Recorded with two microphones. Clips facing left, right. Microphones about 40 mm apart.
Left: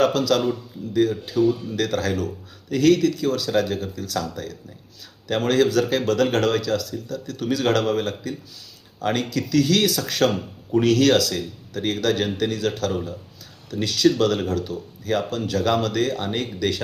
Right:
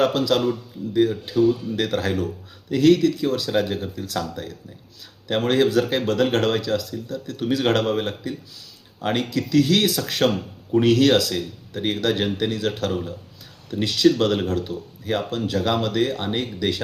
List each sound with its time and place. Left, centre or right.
0.0 s speech: centre
1.7 s speech: centre